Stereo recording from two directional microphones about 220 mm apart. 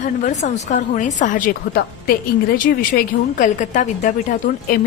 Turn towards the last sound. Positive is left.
turn(degrees=35)  # may be behind; listen again after turning